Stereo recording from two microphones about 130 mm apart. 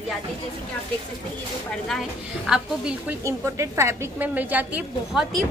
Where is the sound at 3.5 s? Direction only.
20° right (ahead or behind).